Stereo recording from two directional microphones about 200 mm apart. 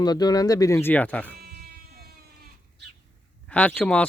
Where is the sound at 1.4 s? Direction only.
50° right (ahead or behind).